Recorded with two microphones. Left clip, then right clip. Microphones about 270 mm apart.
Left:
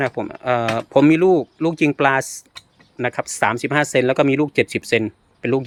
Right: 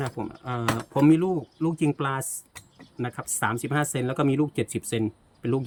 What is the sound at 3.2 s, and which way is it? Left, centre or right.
Speech, centre.